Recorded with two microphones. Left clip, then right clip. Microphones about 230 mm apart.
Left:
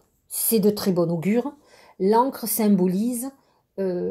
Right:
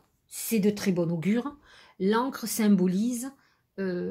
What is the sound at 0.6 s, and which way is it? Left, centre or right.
Speech, right.